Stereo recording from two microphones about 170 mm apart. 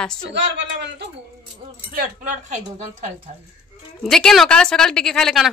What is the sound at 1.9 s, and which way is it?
Speech, 50° right (ahead or behind).